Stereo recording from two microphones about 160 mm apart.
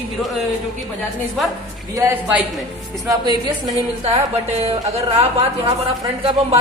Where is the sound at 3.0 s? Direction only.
25° right (ahead or behind).